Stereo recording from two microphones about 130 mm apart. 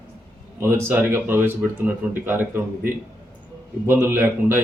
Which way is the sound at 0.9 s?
15° right (ahead or behind).